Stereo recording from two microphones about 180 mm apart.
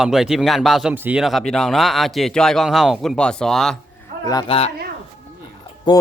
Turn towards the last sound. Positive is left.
turn(degrees=25)  # may be behind; listen again after turning